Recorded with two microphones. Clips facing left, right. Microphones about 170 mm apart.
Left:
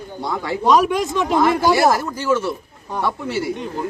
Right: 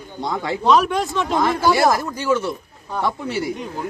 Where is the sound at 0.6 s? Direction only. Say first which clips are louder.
Left 1 dB; 15° left (ahead or behind).